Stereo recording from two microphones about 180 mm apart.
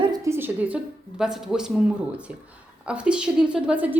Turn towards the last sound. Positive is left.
turn(degrees=-10)  # may be behind; listen again after turning